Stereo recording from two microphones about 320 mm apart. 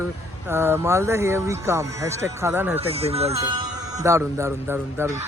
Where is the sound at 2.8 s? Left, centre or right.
Centre.